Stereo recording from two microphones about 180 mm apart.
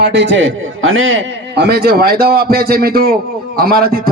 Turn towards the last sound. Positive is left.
turn(degrees=-55)  # may be behind; listen again after turning